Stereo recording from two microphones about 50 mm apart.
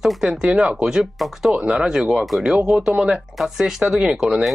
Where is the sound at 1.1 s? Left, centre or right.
Centre.